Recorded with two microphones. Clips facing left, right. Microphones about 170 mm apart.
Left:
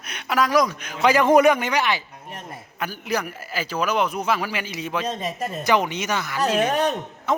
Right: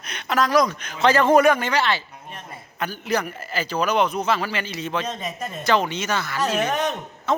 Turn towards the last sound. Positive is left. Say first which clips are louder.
# even
turn(degrees=15)  # may be behind; listen again after turning